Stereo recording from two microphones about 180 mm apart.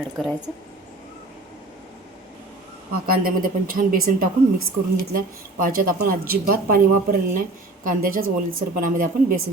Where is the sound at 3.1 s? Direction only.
50° right (ahead or behind).